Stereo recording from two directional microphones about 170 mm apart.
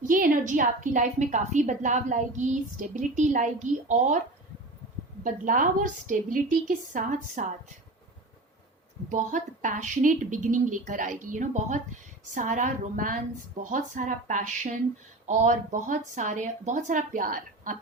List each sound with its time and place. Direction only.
0.0 s a woman's voice: 55° right (ahead or behind)
5.2 s a woman's voice: 50° right (ahead or behind)
9.0 s a woman's voice: 50° right (ahead or behind)